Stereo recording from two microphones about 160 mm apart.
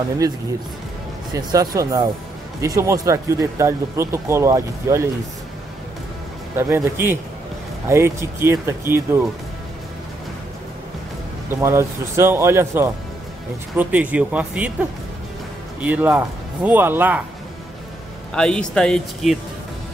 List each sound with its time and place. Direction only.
0.2 s speech: 25° right (ahead or behind)
6.5 s speech: 15° right (ahead or behind)
11.6 s speech: 15° right (ahead or behind)
15.8 s speech: 10° right (ahead or behind)
18.3 s speech: 5° left (ahead or behind)